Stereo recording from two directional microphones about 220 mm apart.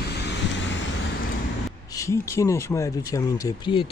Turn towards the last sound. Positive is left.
turn(degrees=15)  # may be behind; listen again after turning